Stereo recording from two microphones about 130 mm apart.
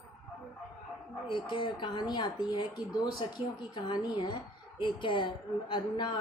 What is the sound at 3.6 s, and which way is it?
A woman's voice, 35° left (ahead or behind).